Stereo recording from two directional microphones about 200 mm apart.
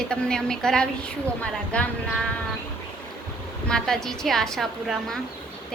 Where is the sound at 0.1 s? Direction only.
5° left (ahead or behind).